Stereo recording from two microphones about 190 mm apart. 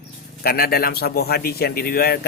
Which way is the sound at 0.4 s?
55° left (ahead or behind).